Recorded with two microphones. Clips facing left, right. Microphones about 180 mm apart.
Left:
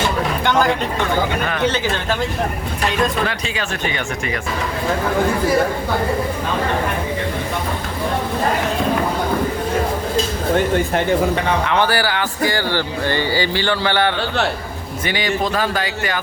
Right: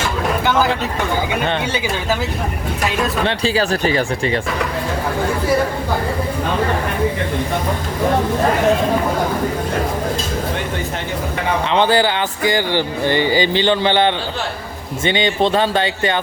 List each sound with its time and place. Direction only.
1.6 s speech: 10° right (ahead or behind)
3.2 s speech: 35° right (ahead or behind)
11.7 s speech: 20° right (ahead or behind)